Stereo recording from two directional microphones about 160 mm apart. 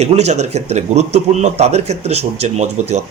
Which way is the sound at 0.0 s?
45° right (ahead or behind).